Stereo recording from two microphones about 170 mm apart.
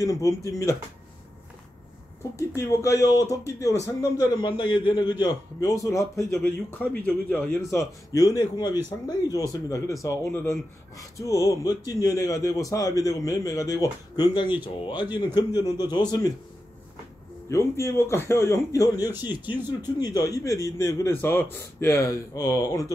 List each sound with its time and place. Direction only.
0.0 s speech: 20° left (ahead or behind)
2.6 s speech: 15° left (ahead or behind)
7.7 s speech: 20° left (ahead or behind)
17.5 s a man's voice: 15° left (ahead or behind)